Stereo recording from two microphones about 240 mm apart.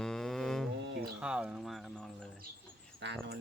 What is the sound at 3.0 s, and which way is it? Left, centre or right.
Speech, right.